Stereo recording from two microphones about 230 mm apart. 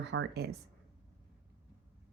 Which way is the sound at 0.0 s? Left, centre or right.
Right.